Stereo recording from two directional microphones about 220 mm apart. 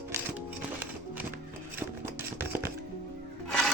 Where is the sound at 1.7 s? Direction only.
10° right (ahead or behind).